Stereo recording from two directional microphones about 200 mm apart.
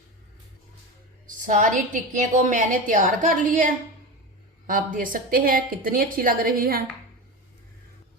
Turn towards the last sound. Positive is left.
turn(degrees=-50)  # may be behind; listen again after turning